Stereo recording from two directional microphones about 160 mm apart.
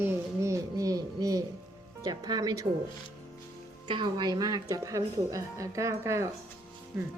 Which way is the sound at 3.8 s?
30° right (ahead or behind).